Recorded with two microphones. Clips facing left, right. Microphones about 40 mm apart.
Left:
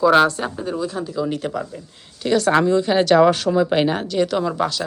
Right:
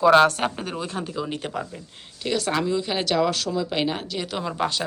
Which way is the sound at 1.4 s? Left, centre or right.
Centre.